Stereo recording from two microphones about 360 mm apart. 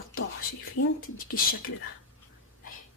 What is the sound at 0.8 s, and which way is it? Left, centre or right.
Speech, left.